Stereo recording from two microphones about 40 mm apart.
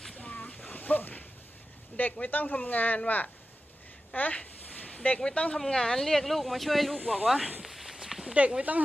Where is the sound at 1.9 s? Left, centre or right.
Left.